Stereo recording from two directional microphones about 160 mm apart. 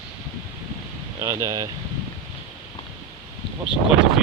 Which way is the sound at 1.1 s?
20° right (ahead or behind).